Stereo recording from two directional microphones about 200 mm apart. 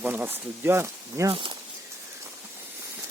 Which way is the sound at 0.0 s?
10° right (ahead or behind).